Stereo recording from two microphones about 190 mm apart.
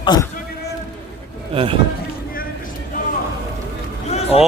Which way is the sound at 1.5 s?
30° right (ahead or behind).